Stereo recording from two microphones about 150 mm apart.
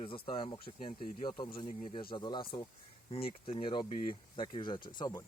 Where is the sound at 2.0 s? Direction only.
30° left (ahead or behind).